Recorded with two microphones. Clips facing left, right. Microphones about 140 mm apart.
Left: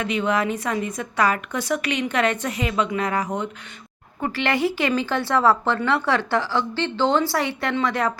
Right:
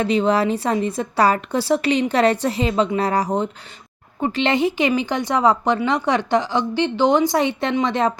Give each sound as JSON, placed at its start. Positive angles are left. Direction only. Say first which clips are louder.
{"t": 0.0, "sound": "a woman's voice", "louder": "right 5 dB", "side_deg": -30}
{"t": 4.2, "sound": "speech", "louder": "right 3 dB", "side_deg": -20}